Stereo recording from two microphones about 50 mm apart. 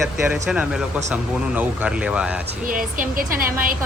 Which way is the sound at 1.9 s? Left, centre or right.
Right.